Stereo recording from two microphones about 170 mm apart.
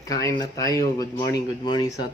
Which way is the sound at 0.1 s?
20° left (ahead or behind).